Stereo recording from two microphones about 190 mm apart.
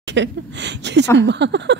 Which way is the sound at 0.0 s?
65° right (ahead or behind).